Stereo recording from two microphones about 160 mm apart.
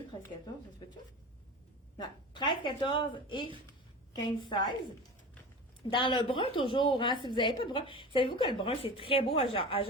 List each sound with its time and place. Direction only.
2.0 s a woman's voice: 30° left (ahead or behind)
5.9 s a woman's voice: 30° left (ahead or behind)